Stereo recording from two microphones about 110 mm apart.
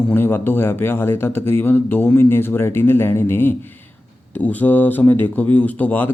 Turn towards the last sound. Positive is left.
turn(degrees=15)  # may be behind; listen again after turning